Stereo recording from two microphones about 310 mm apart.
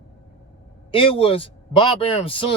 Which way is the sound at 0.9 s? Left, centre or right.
Centre.